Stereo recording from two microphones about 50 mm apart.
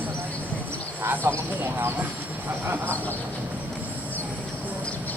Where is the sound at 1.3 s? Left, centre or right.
Right.